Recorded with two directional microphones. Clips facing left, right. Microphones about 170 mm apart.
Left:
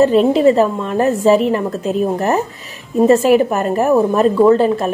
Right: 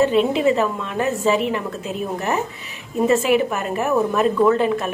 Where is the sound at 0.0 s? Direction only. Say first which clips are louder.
Left 6 dB; 40° left (ahead or behind).